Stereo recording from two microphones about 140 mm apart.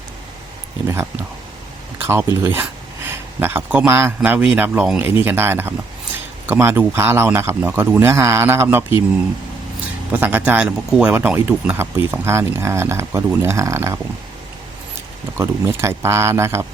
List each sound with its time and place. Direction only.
2.0 s a sound: 15° right (ahead or behind)
2.4 s speech: 15° right (ahead or behind)
10.1 s speech: 10° right (ahead or behind)
15.4 s speech: 20° right (ahead or behind)